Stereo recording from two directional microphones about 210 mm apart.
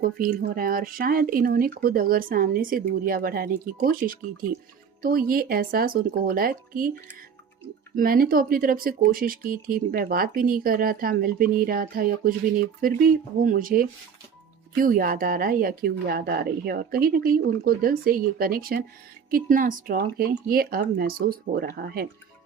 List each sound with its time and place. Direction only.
0.0 s speech: 45° right (ahead or behind)